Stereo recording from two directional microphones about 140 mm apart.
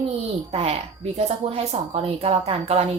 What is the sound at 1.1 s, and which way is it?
A woman's voice, 50° right (ahead or behind).